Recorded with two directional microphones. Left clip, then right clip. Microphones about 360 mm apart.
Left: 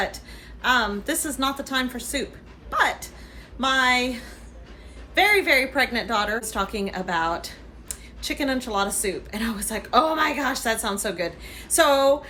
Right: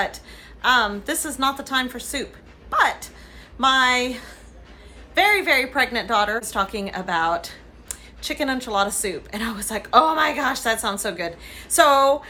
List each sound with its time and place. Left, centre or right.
0.6 s a woman's voice: centre